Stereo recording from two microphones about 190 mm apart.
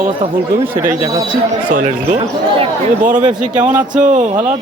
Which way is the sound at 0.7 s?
15° right (ahead or behind).